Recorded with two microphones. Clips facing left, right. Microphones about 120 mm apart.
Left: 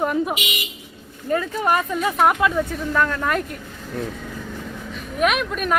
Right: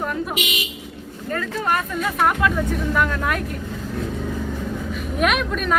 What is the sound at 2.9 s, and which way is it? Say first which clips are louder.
Speech: left 3 dB; 5° right (ahead or behind).